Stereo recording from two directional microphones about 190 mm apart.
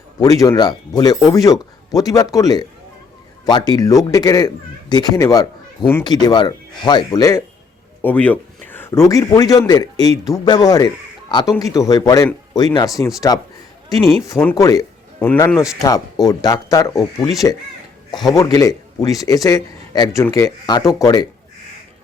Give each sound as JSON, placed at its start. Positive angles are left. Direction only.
{"t": 0.2, "sound": "a man's voice", "side_deg": 20}
{"t": 14.5, "sound": "speech", "side_deg": 15}